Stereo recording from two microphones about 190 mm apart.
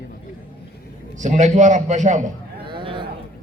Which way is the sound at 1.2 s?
40° right (ahead or behind).